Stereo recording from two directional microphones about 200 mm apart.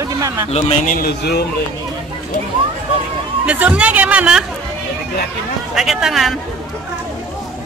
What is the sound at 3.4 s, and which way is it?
Speech, 5° right (ahead or behind).